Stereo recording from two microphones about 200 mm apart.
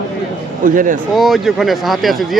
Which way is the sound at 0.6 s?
40° right (ahead or behind).